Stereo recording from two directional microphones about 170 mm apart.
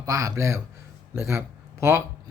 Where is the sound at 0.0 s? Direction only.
20° right (ahead or behind).